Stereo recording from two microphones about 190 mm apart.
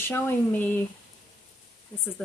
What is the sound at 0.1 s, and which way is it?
Speech, 10° left (ahead or behind).